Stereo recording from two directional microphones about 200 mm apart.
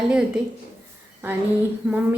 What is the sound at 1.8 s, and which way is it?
Speech, 5° right (ahead or behind).